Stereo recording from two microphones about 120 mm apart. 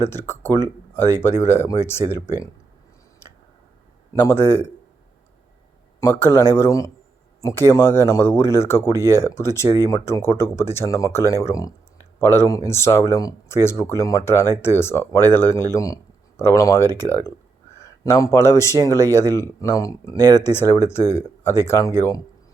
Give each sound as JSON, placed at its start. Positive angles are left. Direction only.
{"t": 0.0, "sound": "speech", "side_deg": 20}
{"t": 4.1, "sound": "speech", "side_deg": 20}
{"t": 6.0, "sound": "speech", "side_deg": 20}